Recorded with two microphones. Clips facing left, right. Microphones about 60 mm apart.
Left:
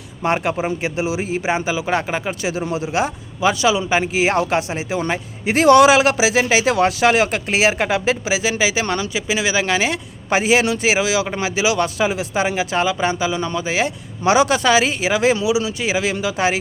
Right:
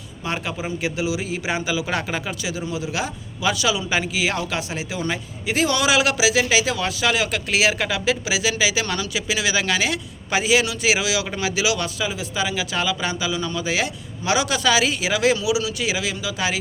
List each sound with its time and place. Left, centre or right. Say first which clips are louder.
0.2 s speech: left 8 dB; left
1.3 s speech: left 4 dB; left
2.4 s speech: left 5 dB; left
4.1 s speech: left 6 dB; left
5.5 s speech: left 9 dB; left
11.9 s speech: left 6 dB; left